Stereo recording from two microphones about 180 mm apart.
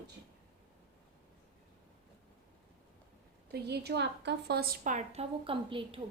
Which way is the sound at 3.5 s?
65° right (ahead or behind).